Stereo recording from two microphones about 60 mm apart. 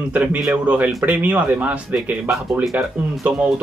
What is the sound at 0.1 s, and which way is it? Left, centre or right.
Speech, right.